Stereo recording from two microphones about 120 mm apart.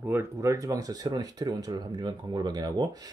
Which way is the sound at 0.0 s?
20° right (ahead or behind).